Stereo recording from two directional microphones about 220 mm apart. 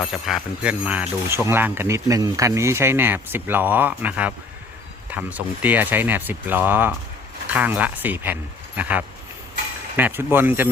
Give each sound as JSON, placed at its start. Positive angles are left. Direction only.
{"t": 0.0, "sound": "speech", "side_deg": 0}